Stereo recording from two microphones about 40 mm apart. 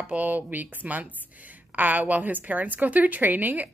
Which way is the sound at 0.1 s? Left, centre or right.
Right.